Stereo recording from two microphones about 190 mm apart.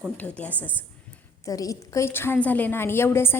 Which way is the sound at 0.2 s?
5° left (ahead or behind).